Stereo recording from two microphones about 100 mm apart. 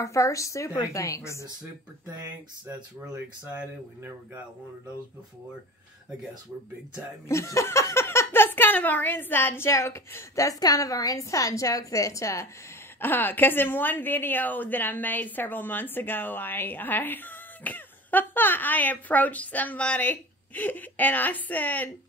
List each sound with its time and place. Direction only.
0.0 s a woman's voice: 30° left (ahead or behind)
3.4 s speech: 20° right (ahead or behind)
7.2 s a woman's voice: 30° left (ahead or behind)
13.0 s a woman's voice: 20° left (ahead or behind)